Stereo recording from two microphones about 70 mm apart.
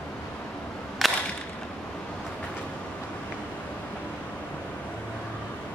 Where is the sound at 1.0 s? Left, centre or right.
Centre.